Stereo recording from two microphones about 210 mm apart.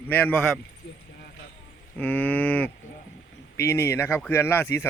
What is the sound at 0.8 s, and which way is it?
Speech, 50° left (ahead or behind).